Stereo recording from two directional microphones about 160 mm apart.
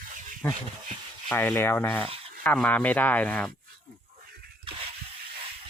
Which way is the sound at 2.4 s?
10° left (ahead or behind).